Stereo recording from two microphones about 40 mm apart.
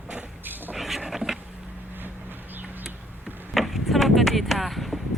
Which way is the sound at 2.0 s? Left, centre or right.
Right.